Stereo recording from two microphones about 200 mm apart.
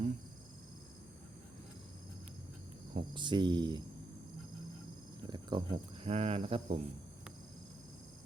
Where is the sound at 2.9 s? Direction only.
25° right (ahead or behind).